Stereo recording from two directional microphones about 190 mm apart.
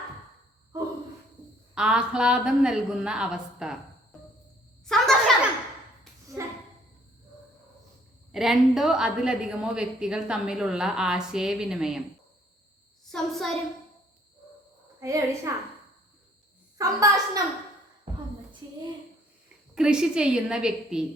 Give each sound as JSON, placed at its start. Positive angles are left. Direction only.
{"t": 1.7, "sound": "a woman's voice", "side_deg": -5}
{"t": 4.9, "sound": "a sound", "side_deg": 0}
{"t": 8.3, "sound": "a woman's voice", "side_deg": 0}
{"t": 13.1, "sound": "a woman's voice", "side_deg": 0}
{"t": 15.0, "sound": "a child's voice", "side_deg": -15}
{"t": 16.7, "sound": "a child's voice", "side_deg": -15}
{"t": 19.7, "sound": "a woman's voice", "side_deg": -5}